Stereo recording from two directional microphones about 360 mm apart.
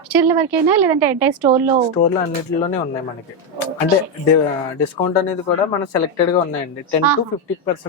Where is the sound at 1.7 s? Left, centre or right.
Centre.